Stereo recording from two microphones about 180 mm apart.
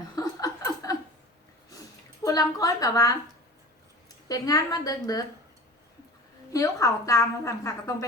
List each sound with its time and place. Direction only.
0.2 s a sound: 20° left (ahead or behind)
2.2 s a woman's voice: 20° left (ahead or behind)
4.3 s a woman's voice: 20° left (ahead or behind)
6.5 s a woman's voice: 20° left (ahead or behind)